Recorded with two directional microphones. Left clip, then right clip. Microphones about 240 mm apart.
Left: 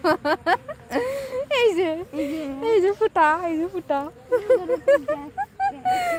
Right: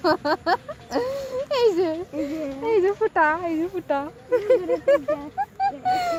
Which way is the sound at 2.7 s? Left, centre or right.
Centre.